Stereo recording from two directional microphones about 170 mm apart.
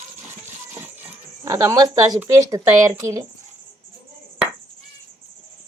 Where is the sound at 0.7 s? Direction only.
15° right (ahead or behind).